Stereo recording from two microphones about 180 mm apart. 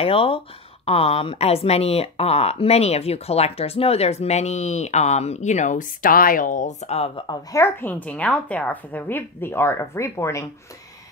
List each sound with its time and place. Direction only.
0.0 s speech: 30° left (ahead or behind)
7.5 s a woman's voice: 10° left (ahead or behind)